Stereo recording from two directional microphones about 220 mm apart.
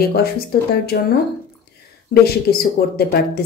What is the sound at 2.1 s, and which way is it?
A woman's voice, 45° left (ahead or behind).